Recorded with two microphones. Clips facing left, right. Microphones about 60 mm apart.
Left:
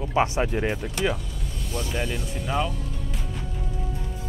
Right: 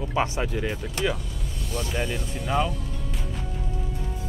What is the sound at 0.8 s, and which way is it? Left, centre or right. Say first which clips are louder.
Speech: left 1 dB; centre.